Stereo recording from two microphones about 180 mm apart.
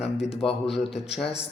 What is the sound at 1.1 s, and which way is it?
Speech, centre (ahead or behind).